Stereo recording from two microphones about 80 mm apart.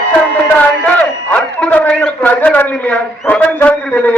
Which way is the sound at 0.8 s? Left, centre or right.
Centre.